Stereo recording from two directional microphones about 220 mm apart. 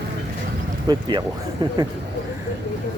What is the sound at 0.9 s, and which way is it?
Speech, 20° right (ahead or behind).